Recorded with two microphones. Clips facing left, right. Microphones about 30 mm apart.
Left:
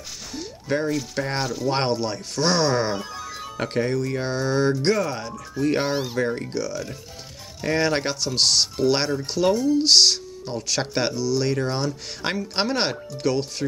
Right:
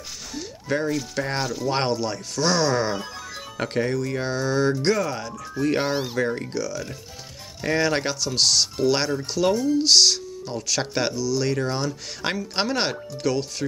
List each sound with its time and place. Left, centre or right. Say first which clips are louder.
0.3 s speech: left 1 dB; centre
3.0 s speech: left 2 dB; centre
6.5 s speech: left 1 dB; centre
7.8 s speech: left 1 dB; centre